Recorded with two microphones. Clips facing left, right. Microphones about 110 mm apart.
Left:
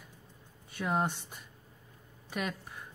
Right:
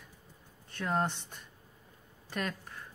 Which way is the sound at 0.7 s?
10° left (ahead or behind).